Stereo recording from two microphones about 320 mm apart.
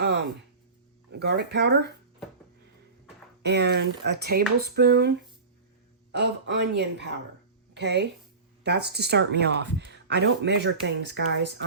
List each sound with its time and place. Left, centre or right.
0.0 s a sound: right
1.1 s speech: right
3.4 s a woman's voice: right